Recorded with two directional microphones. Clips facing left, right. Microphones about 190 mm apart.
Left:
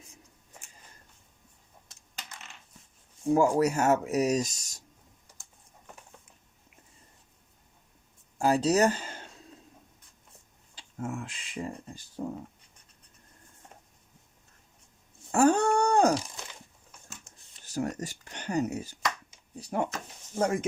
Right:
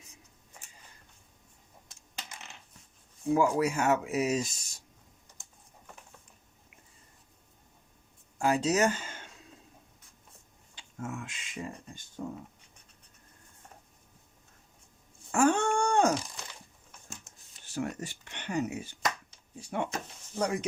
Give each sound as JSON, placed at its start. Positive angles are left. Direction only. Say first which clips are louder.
{"t": 3.2, "sound": "speech", "louder": "left 3 dB", "side_deg": 45}
{"t": 8.4, "sound": "speech", "louder": "left 3 dB", "side_deg": 35}
{"t": 10.8, "sound": "speech", "louder": "left 3 dB", "side_deg": 35}
{"t": 15.3, "sound": "a sound", "louder": "left 3 dB", "side_deg": 40}
{"t": 17.3, "sound": "a sound", "louder": "left 1 dB", "side_deg": 0}
{"t": 17.7, "sound": "speech", "louder": "left 3 dB", "side_deg": 40}